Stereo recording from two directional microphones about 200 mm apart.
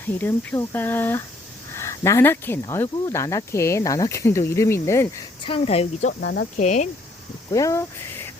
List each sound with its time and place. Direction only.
0.0 s speech: 10° left (ahead or behind)
5.5 s a woman's voice: 30° left (ahead or behind)
6.1 s speech: 55° left (ahead or behind)
6.6 s a woman's voice: 35° left (ahead or behind)
7.5 s speech: 15° left (ahead or behind)